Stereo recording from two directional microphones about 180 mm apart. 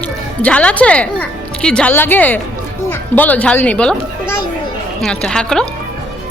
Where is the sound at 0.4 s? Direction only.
5° left (ahead or behind).